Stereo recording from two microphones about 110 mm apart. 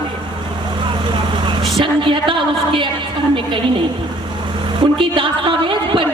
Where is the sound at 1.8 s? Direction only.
50° right (ahead or behind).